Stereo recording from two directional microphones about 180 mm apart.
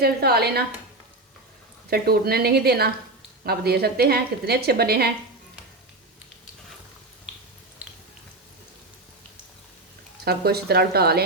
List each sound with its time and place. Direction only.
0.0 s a woman's voice: 60° right (ahead or behind)
1.9 s a woman's voice: 60° right (ahead or behind)
10.2 s a woman's voice: 60° right (ahead or behind)